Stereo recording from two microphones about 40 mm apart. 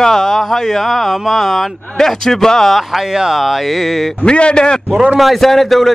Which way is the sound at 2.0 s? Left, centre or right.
Centre.